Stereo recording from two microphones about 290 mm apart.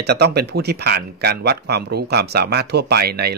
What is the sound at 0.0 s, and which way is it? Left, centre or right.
A man's voice, right.